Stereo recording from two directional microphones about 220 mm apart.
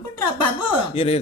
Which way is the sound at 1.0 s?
30° left (ahead or behind).